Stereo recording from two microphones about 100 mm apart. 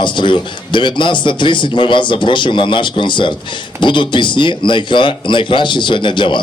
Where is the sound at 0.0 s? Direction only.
50° left (ahead or behind).